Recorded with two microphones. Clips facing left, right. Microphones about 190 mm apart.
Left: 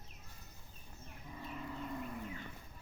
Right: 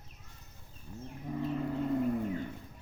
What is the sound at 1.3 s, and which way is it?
Vehicle, 55° right (ahead or behind).